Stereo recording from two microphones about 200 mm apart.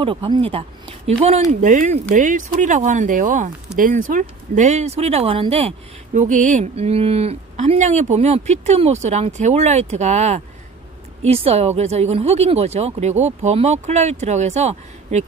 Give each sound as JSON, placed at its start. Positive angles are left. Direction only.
{"t": 0.0, "sound": "speech", "side_deg": -25}